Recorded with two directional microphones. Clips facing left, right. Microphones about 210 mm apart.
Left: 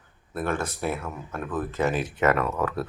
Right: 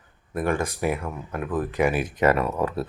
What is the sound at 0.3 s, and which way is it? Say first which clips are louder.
Speech: right 3 dB; 15° right (ahead or behind).